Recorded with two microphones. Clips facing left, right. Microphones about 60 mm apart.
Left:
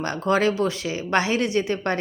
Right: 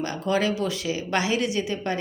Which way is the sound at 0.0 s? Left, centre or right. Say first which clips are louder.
Left 3 dB; left.